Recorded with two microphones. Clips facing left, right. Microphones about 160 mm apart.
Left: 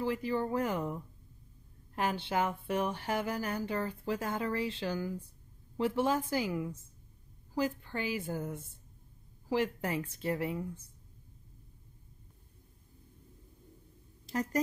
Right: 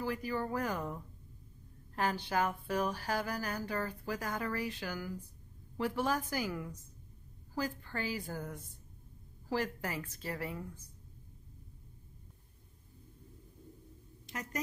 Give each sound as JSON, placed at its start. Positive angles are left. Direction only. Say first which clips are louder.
{"t": 0.0, "sound": "speech", "louder": "left 4 dB", "side_deg": 25}
{"t": 14.2, "sound": "a woman's voice", "louder": "left 9 dB", "side_deg": 35}